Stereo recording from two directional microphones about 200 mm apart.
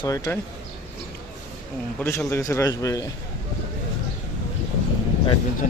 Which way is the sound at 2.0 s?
10° left (ahead or behind).